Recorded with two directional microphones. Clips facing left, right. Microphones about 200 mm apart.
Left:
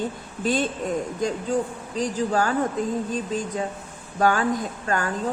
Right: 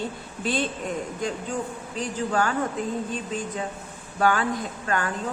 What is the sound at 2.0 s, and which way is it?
Speech, 35° left (ahead or behind).